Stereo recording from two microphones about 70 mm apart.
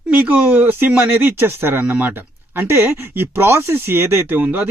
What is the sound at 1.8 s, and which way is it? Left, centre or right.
Speech, right.